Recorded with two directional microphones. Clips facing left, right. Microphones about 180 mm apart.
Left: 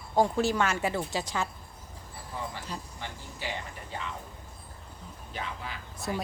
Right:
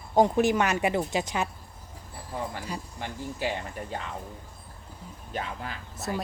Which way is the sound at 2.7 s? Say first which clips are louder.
Right 3 dB; 10° right (ahead or behind).